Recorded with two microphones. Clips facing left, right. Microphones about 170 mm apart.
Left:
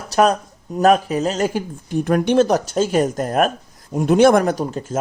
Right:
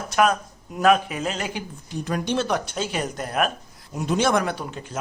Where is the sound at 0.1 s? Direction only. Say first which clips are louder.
Left 5 dB; 35° left (ahead or behind).